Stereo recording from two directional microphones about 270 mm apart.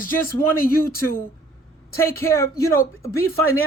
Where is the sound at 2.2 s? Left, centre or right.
Centre.